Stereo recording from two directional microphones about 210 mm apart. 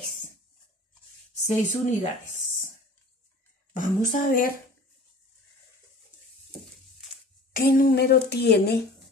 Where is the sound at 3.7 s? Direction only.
35° left (ahead or behind).